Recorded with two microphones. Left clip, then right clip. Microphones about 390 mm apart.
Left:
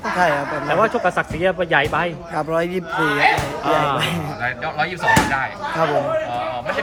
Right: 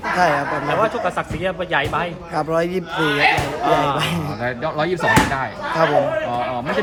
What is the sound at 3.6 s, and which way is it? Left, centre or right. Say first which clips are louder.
Speech: even; centre.